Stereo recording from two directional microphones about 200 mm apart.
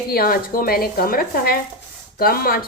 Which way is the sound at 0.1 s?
45° left (ahead or behind).